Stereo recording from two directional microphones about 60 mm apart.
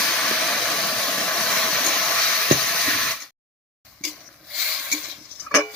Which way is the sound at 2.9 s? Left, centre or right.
Centre.